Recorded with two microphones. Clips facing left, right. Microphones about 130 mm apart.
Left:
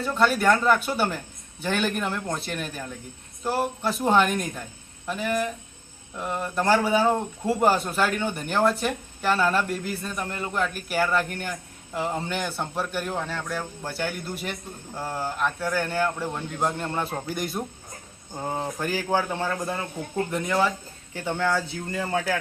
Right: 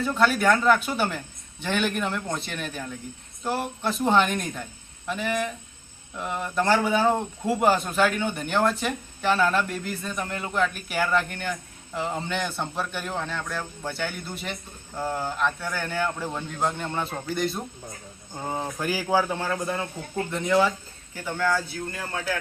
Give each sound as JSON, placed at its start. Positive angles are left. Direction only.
{"t": 0.0, "sound": "a man's voice", "side_deg": 0}
{"t": 18.3, "sound": "speech", "side_deg": -5}
{"t": 21.2, "sound": "speech", "side_deg": 25}